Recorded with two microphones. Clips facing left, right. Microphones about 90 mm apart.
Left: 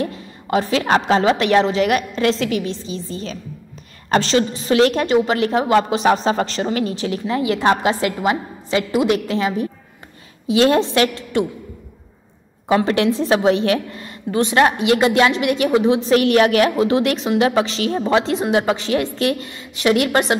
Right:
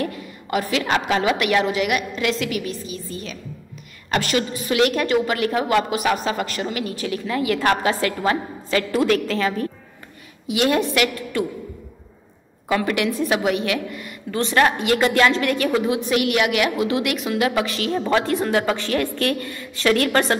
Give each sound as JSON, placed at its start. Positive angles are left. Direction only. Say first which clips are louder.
{"t": 0.0, "sound": "a woman's voice", "louder": "left 2 dB", "side_deg": 25}
{"t": 10.4, "sound": "a woman's voice", "louder": "left 5 dB", "side_deg": 30}
{"t": 12.6, "sound": "a woman's voice", "louder": "left 5 dB", "side_deg": 30}